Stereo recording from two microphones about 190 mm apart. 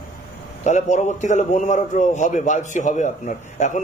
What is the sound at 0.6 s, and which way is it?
A man's voice, 40° left (ahead or behind).